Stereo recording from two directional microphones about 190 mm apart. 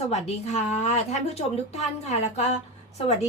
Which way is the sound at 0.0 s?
35° left (ahead or behind).